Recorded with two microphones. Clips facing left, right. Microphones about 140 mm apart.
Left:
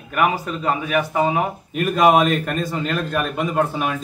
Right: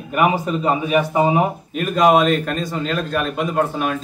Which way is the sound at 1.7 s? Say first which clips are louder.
Even; centre (ahead or behind).